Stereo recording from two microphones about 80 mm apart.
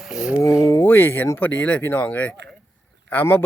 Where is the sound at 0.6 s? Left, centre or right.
Left.